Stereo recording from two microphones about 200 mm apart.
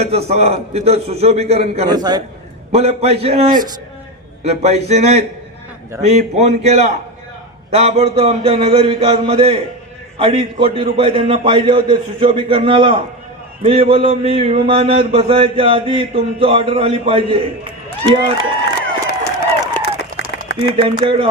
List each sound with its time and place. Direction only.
0.0 s a man's voice: 30° right (ahead or behind)
1.9 s a man's voice: 20° right (ahead or behind)
2.7 s a man's voice: 30° right (ahead or behind)
18.6 s run: 55° left (ahead or behind)
19.7 s a sound: 55° left (ahead or behind)
20.6 s a man's voice: 25° right (ahead or behind)